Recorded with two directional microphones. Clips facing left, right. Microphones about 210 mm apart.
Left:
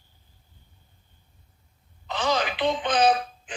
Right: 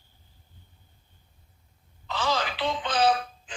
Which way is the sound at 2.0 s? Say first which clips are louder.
Left 3 dB; 20° left (ahead or behind).